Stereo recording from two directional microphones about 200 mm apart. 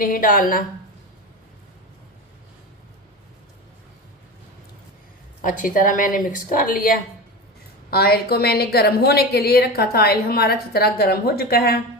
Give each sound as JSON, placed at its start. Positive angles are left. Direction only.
{"t": 0.0, "sound": "a woman's voice", "side_deg": 45}
{"t": 5.4, "sound": "a woman's voice", "side_deg": 40}